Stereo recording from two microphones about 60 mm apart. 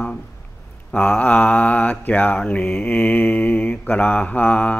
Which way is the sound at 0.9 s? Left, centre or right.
Left.